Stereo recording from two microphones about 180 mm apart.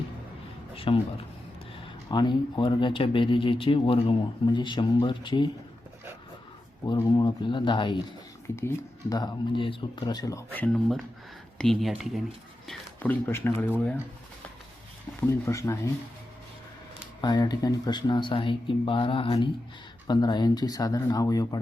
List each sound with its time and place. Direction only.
0.9 s speech: 30° left (ahead or behind)
2.0 s speech: 25° left (ahead or behind)
6.8 s speech: 25° left (ahead or behind)
15.3 s speech: 15° left (ahead or behind)
17.2 s speech: 25° left (ahead or behind)